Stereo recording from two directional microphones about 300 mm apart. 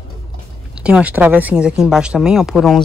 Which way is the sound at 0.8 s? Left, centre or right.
Centre.